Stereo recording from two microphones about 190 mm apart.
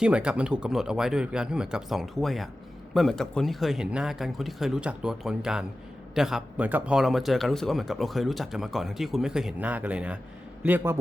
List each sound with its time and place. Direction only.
0.0 s a man's voice: 5° right (ahead or behind)